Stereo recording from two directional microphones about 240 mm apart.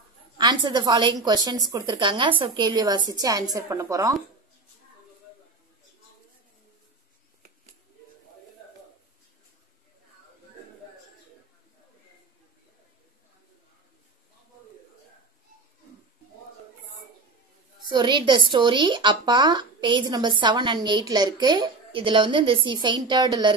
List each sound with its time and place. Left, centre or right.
0.4 s a woman's voice: centre
17.8 s speech: centre